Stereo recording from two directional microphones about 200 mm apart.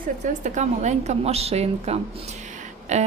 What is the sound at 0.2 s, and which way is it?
A woman's voice, 35° right (ahead or behind).